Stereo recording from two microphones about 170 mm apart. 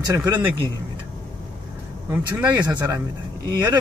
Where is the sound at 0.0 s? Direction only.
20° right (ahead or behind).